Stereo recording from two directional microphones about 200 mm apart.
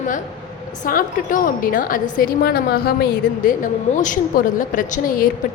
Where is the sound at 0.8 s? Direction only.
45° left (ahead or behind).